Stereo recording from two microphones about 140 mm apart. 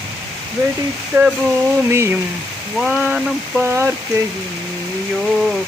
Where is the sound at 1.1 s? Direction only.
20° right (ahead or behind).